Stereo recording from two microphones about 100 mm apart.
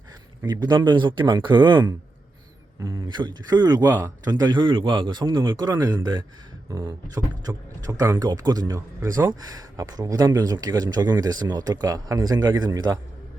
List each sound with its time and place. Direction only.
0.4 s speech: 45° right (ahead or behind)
2.9 s speech: 50° right (ahead or behind)
3.8 s speech: 25° right (ahead or behind)
4.3 s speech: 45° right (ahead or behind)